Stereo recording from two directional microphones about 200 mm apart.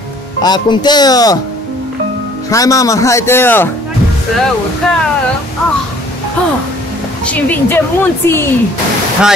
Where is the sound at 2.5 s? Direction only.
15° left (ahead or behind).